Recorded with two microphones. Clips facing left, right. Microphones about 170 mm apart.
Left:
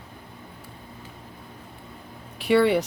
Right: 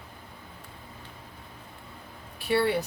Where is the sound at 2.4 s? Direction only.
80° left.